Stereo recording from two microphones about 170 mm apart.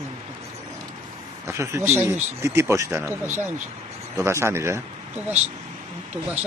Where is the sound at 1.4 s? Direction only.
15° right (ahead or behind).